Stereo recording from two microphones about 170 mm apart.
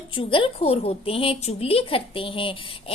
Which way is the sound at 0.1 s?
30° left (ahead or behind).